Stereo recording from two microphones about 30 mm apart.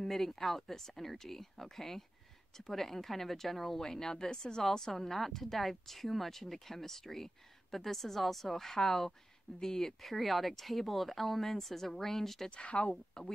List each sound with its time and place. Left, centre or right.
0.0 s a woman's voice: centre
12.4 s a woman's voice: left
12.9 s speech: left